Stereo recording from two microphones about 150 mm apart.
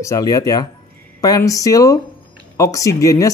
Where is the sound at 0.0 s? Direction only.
20° left (ahead or behind).